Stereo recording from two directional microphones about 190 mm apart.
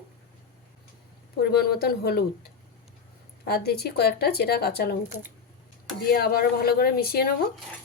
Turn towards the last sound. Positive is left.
turn(degrees=55)  # may be behind; listen again after turning